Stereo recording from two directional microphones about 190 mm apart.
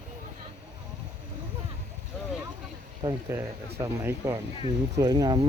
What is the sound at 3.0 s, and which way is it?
Speech, 15° right (ahead or behind).